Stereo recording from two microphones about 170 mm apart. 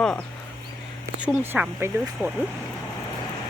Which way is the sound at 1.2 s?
5° right (ahead or behind).